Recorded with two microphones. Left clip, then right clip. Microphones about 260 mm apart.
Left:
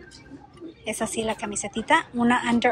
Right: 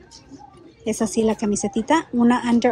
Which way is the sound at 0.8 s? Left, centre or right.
Right.